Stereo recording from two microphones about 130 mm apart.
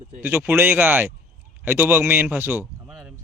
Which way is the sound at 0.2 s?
15° right (ahead or behind).